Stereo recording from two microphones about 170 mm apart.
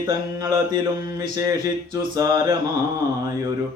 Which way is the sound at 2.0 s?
20° right (ahead or behind).